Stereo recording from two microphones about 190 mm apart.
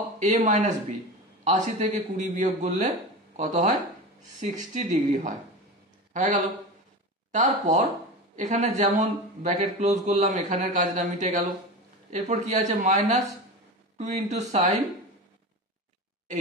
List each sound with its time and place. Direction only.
0.2 s a man's voice: 40° right (ahead or behind)
4.7 s a man's voice: 40° right (ahead or behind)